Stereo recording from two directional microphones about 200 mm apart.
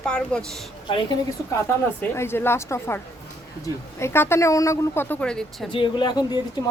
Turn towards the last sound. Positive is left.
turn(degrees=20)  # may be behind; listen again after turning